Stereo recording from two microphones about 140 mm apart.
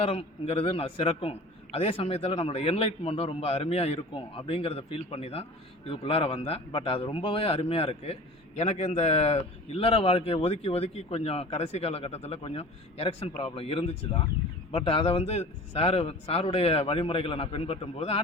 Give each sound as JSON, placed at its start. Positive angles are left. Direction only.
{"t": 0.0, "sound": "a man's voice", "side_deg": 45}